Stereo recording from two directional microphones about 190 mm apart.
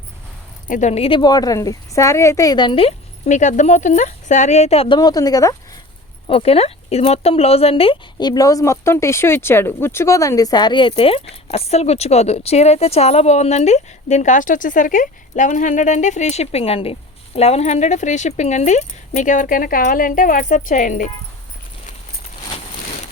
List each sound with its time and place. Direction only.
0.7 s a woman's voice: 40° left (ahead or behind)
4.9 s speech: 20° left (ahead or behind)
6.2 s a woman's voice: 30° left (ahead or behind)